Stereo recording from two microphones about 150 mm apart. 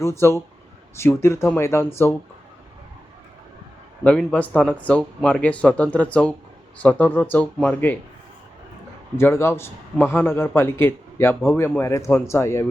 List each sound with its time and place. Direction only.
0.0 s a man's voice: 20° left (ahead or behind)
4.0 s a man's voice: 5° left (ahead or behind)
9.1 s a man's voice: 15° left (ahead or behind)